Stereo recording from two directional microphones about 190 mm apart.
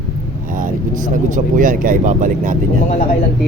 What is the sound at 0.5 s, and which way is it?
Speech, 45° right (ahead or behind).